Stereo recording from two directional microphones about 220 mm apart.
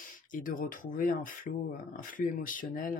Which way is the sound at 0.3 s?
40° left (ahead or behind).